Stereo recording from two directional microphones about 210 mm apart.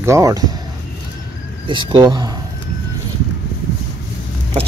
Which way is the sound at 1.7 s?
20° right (ahead or behind).